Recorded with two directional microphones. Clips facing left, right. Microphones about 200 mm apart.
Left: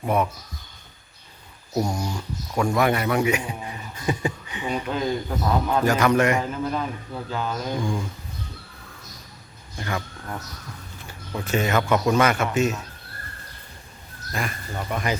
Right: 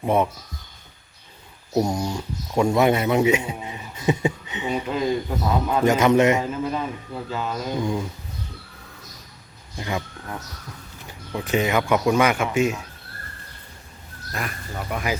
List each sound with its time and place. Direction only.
0.0 s a man's voice: 25° right (ahead or behind)
1.7 s a man's voice: 20° right (ahead or behind)
4.7 s a man's voice: 5° right (ahead or behind)
5.8 s a man's voice: 20° right (ahead or behind)
6.4 s a man's voice: 5° right (ahead or behind)
7.8 s a man's voice: 20° right (ahead or behind)
9.7 s speech: 15° right (ahead or behind)
11.3 s speech: 15° right (ahead or behind)
14.3 s a man's voice: 5° right (ahead or behind)